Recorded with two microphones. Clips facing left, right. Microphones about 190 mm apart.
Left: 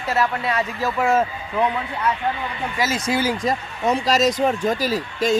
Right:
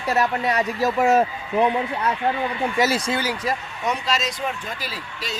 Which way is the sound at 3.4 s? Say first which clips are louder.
Left 4 dB; 30° left (ahead or behind).